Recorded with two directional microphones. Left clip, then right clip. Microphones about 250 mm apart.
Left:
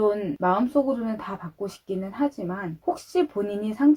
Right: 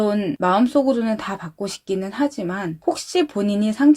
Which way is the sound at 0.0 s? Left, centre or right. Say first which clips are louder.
Right 3 dB; right.